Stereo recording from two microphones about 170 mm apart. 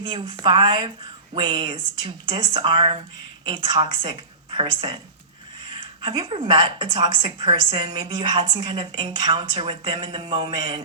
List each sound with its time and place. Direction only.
0.0 s a woman's voice: 30° right (ahead or behind)
6.0 s a woman's voice: 25° right (ahead or behind)